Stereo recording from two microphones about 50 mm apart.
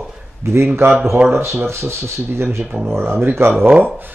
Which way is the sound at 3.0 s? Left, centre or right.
Right.